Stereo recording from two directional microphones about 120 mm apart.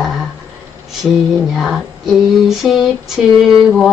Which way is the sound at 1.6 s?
Centre (ahead or behind).